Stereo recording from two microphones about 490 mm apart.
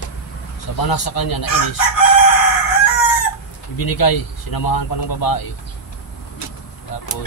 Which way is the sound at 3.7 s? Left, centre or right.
Left.